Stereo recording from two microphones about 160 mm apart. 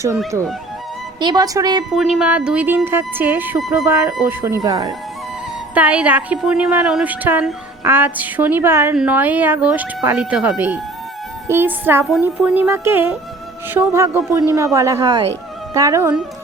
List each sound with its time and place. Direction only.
1.2 s speech: 25° right (ahead or behind)
1.9 s speech: centre (ahead or behind)
3.6 s speech: centre (ahead or behind)
3.8 s speech: 15° right (ahead or behind)
5.7 s speech: 10° right (ahead or behind)